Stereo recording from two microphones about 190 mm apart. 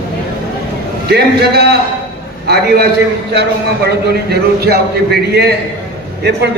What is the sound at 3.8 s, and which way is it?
A man's voice, 55° right (ahead or behind).